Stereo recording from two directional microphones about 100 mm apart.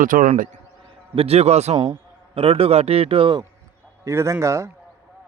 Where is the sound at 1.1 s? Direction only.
85° right.